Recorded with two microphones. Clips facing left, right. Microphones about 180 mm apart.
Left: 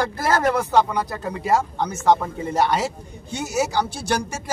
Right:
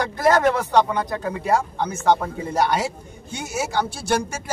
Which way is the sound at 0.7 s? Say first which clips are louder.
Even; centre (ahead or behind).